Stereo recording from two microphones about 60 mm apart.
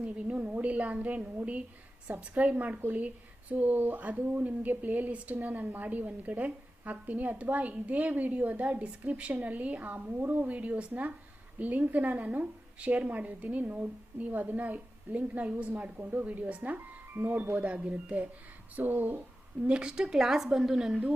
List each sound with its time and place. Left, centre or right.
0.0 s a woman's voice: centre
17.2 s speech: right
17.6 s a woman's voice: right
19.6 s a woman's voice: centre